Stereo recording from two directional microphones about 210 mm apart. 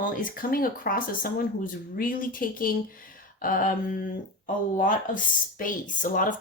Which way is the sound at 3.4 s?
40° left (ahead or behind).